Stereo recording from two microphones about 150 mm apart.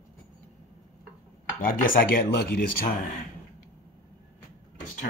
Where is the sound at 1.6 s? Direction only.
70° left (ahead or behind).